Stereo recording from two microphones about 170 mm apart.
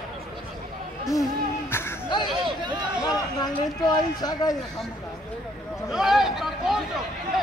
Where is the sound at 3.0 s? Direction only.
20° left (ahead or behind).